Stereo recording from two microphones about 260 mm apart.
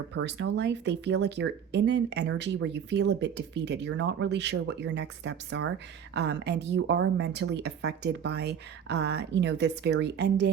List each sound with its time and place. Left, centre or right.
0.1 s a woman's voice: right